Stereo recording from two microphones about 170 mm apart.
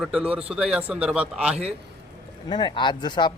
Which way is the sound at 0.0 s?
5° right (ahead or behind).